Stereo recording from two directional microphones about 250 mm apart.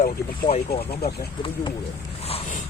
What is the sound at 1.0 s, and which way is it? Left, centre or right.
Speech, left.